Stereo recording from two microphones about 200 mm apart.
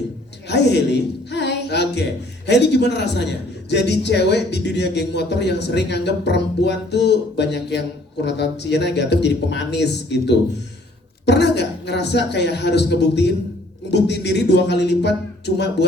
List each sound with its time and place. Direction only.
0.4 s a woman's voice: 60° left (ahead or behind)